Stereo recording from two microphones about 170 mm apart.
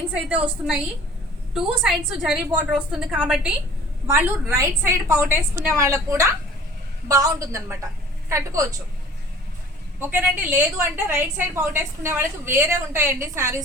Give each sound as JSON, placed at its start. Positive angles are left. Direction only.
{"t": 0.1, "sound": "a woman's voice", "side_deg": -10}
{"t": 1.5, "sound": "a woman's voice", "side_deg": -5}
{"t": 10.0, "sound": "a woman's voice", "side_deg": -10}